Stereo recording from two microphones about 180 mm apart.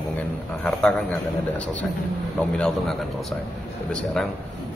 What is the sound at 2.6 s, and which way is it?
Speech, 5° left (ahead or behind).